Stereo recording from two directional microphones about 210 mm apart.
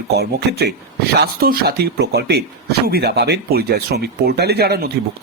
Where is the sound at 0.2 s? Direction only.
50° right (ahead or behind).